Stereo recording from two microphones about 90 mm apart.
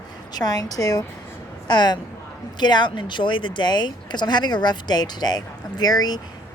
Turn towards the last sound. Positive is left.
turn(degrees=45)  # may be behind; listen again after turning